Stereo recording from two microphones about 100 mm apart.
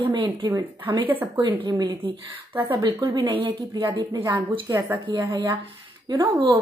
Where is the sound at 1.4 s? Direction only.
55° right (ahead or behind).